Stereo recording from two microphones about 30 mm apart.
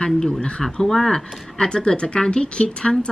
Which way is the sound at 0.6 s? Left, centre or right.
Centre.